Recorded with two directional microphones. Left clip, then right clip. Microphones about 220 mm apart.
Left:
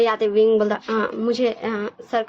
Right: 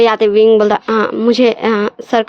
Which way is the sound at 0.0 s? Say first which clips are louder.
Right 8 dB; 45° right (ahead or behind).